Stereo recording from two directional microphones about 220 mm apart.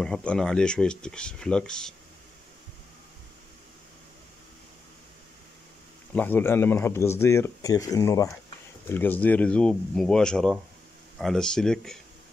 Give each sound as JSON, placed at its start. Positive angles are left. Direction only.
{"t": 0.0, "sound": "speech", "side_deg": 5}
{"t": 6.1, "sound": "speech", "side_deg": 10}